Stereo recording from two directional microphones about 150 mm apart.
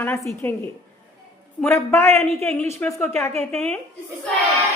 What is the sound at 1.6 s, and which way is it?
A woman's voice, 15° left (ahead or behind).